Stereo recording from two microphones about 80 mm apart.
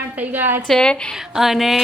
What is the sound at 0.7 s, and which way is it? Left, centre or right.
Speech, centre.